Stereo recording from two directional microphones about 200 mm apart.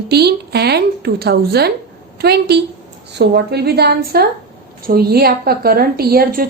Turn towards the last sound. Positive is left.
turn(degrees=-45)  # may be behind; listen again after turning